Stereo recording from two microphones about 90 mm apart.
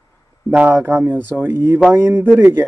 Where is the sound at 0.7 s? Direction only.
30° right (ahead or behind).